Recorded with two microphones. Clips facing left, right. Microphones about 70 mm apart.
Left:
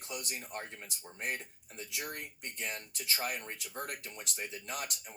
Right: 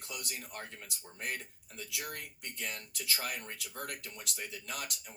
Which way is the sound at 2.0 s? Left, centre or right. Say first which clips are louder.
Left 1 dB; left.